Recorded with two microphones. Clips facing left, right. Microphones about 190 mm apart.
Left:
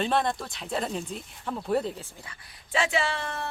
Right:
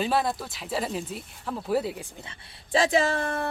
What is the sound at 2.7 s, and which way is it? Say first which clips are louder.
Speech: right 5 dB; 35° right (ahead or behind).